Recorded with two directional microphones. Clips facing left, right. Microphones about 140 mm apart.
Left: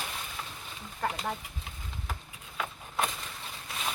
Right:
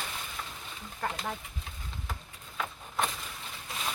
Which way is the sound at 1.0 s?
10° left (ahead or behind).